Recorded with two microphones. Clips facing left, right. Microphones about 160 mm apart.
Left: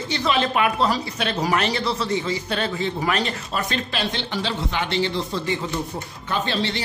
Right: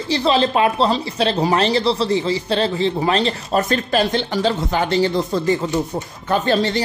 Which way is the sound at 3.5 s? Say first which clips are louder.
Right 11 dB; 45° right (ahead or behind).